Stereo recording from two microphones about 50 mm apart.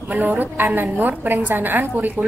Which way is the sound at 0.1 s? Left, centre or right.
Right.